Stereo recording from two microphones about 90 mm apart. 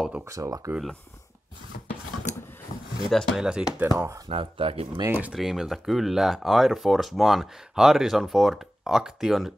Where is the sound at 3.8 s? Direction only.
30° right (ahead or behind).